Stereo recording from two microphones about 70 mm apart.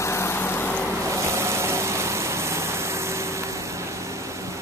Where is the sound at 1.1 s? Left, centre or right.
Right.